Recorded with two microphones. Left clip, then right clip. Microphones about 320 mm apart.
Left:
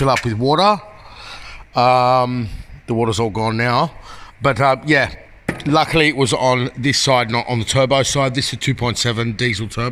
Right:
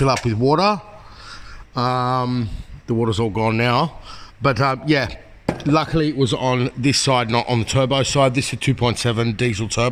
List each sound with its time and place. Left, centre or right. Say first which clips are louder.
0.0 s speech: left 2 dB; centre